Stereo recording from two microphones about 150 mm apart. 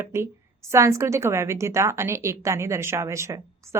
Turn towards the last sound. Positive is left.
turn(degrees=-20)  # may be behind; listen again after turning